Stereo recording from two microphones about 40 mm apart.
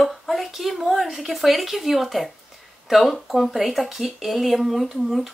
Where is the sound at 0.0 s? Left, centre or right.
Centre.